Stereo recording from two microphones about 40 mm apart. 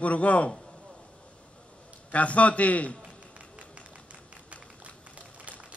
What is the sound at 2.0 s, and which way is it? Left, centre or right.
Speech, left.